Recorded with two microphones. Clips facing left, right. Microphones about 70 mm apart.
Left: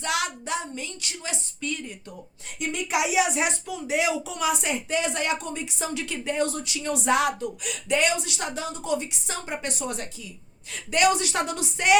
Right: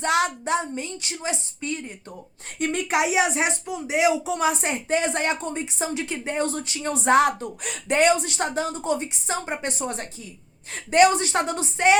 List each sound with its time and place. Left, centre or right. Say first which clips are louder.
0.0 s a woman's voice: right 6 dB; right
2.6 s speech: right 3 dB; right